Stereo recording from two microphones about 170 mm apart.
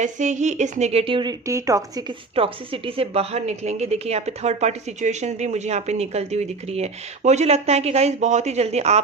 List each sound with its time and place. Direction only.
0.0 s a woman's voice: 45° right (ahead or behind); by 2.1 s 20° right (ahead or behind)
2.3 s a woman's voice: 30° right (ahead or behind)